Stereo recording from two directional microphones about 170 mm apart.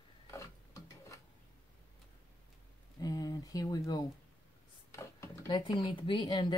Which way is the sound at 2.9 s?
20° left (ahead or behind).